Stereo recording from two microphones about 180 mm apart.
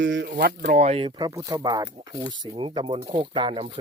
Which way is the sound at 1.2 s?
20° right (ahead or behind).